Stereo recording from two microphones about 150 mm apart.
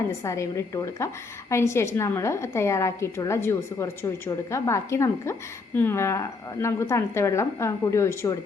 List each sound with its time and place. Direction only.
0.3 s a woman's voice: 20° left (ahead or behind)